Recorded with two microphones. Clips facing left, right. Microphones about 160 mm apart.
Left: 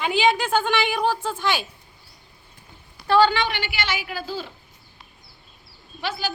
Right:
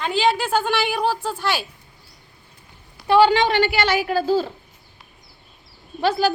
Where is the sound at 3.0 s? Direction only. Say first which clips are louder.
Right 3 dB; 25° right (ahead or behind).